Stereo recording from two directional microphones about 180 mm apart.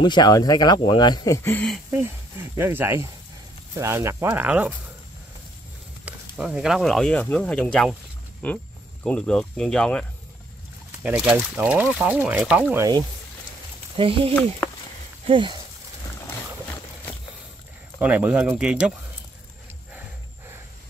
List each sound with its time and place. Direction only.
0.0 s speech: 25° left (ahead or behind); by 1.8 s 10° left (ahead or behind)
2.5 s speech: 15° right (ahead or behind)
6.0 s speech: 5° right (ahead or behind)
11.0 s speech: 5° right (ahead or behind)
13.9 s speech: 30° right (ahead or behind)
17.9 s speech: 10° right (ahead or behind)